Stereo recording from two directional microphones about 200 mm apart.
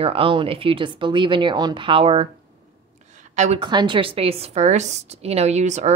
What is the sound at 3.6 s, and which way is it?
A woman's voice, 20° right (ahead or behind).